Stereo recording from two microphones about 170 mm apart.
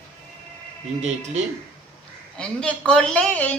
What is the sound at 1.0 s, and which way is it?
Speech, 45° right (ahead or behind).